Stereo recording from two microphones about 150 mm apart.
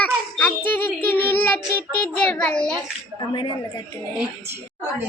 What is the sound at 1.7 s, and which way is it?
A child's voice, 10° left (ahead or behind).